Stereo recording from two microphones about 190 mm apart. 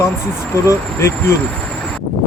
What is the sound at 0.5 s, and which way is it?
Speech, 15° left (ahead or behind).